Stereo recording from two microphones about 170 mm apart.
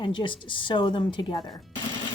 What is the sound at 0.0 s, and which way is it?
A woman's voice, 30° left (ahead or behind).